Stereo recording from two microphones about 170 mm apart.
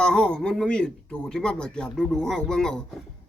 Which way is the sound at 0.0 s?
5° left (ahead or behind).